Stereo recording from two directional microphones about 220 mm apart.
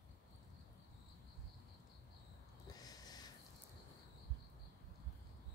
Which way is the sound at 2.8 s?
15° left (ahead or behind).